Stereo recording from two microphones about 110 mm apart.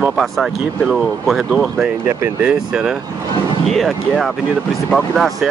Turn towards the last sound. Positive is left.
turn(degrees=0)  # may be behind; listen again after turning